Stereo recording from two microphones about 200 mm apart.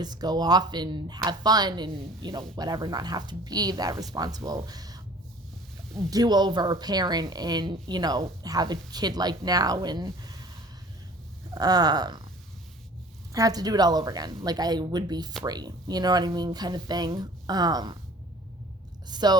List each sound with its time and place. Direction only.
0.0 s speech: 20° right (ahead or behind)
6.1 s speech: 20° right (ahead or behind)
11.5 s speech: 20° right (ahead or behind)
13.3 s speech: 20° right (ahead or behind)
19.0 s a woman's voice: 20° right (ahead or behind)